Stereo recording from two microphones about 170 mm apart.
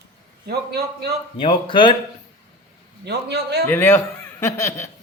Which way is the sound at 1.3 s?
30° left (ahead or behind).